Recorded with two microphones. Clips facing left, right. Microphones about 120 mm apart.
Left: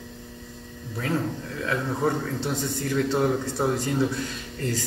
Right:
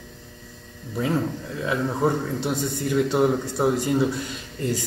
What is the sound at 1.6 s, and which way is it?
A man's voice, 15° right (ahead or behind).